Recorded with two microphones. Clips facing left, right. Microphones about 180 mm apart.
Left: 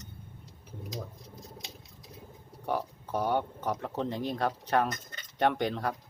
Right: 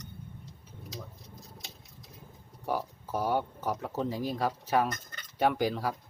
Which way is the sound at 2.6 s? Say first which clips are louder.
Even; 5° right (ahead or behind).